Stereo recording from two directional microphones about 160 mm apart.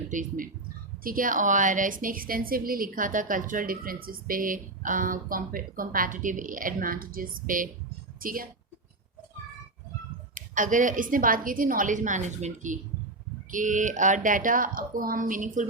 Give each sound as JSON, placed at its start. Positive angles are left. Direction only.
{"t": 0.1, "sound": "a woman's voice", "side_deg": -55}
{"t": 10.3, "sound": "a woman's voice", "side_deg": -55}